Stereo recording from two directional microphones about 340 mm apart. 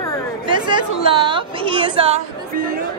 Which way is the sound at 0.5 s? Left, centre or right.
Centre.